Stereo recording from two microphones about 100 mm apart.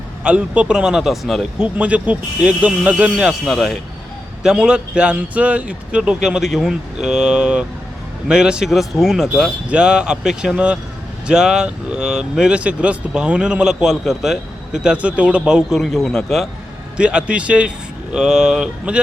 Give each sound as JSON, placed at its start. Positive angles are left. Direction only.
{"t": 0.3, "sound": "speech", "side_deg": -10}
{"t": 1.6, "sound": "speech", "side_deg": -15}
{"t": 3.4, "sound": "speech", "side_deg": 0}
{"t": 9.6, "sound": "speech", "side_deg": -10}
{"t": 17.0, "sound": "speech", "side_deg": -10}